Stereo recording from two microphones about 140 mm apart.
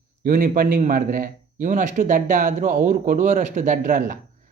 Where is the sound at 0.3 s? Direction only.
80° right.